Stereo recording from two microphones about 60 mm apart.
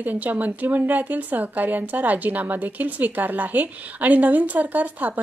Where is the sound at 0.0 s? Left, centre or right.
Right.